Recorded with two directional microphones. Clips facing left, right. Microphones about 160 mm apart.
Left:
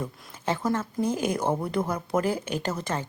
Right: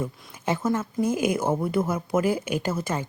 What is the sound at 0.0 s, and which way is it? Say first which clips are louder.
A woman's voice: right 2 dB; 10° right (ahead or behind).